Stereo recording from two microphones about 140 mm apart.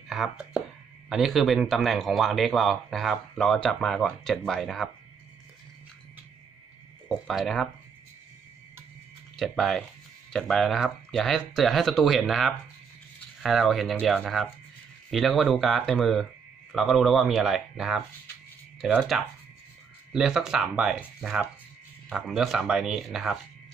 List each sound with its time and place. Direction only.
0.1 s speech: 5° right (ahead or behind)
7.1 s speech: centre (ahead or behind)
9.4 s speech: centre (ahead or behind)